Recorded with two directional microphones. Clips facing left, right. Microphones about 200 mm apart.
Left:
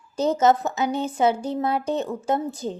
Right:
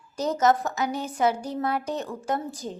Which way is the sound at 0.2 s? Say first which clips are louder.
Left 3 dB; 25° left (ahead or behind).